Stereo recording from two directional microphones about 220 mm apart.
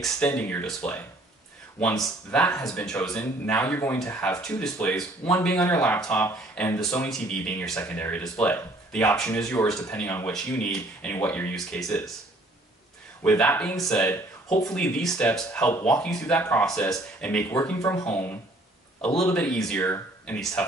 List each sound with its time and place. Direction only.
0.0 s speech: 5° left (ahead or behind)
13.2 s speech: 5° left (ahead or behind)